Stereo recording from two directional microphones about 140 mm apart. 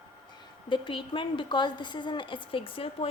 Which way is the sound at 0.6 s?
35° left (ahead or behind).